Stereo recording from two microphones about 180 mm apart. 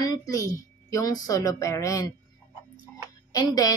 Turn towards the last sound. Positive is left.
turn(degrees=20)  # may be behind; listen again after turning